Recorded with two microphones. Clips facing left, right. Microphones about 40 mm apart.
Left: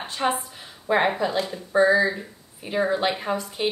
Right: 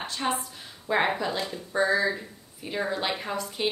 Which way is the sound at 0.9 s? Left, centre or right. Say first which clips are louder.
Left 4 dB; centre.